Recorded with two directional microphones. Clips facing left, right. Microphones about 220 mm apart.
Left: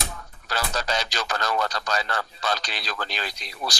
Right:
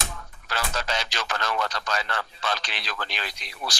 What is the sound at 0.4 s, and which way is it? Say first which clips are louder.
Speech: left 2 dB; 40° left (ahead or behind).